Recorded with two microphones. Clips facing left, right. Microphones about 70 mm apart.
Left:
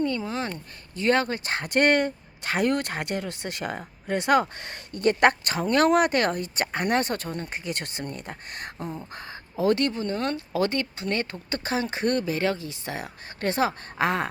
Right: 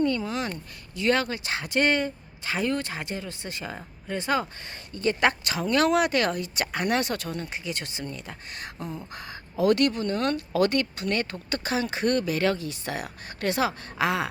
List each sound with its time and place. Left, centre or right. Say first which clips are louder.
0.0 s speech: right 1 dB; left
3.8 s speech: left 4 dB; left
4.2 s speech: left 5 dB; left